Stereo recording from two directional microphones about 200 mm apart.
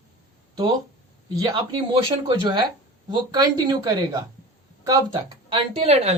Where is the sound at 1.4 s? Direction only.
20° right (ahead or behind).